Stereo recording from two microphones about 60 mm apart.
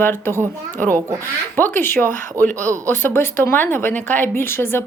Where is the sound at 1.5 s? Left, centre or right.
Left.